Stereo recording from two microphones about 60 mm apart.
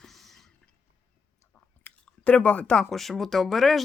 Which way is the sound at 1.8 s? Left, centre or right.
Left.